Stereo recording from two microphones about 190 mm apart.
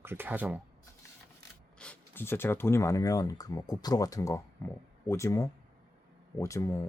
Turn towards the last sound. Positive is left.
turn(degrees=15)  # may be behind; listen again after turning